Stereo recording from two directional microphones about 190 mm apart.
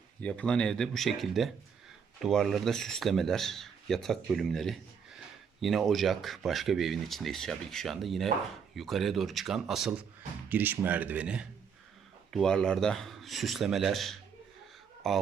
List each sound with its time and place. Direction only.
0.2 s speech: 5° left (ahead or behind)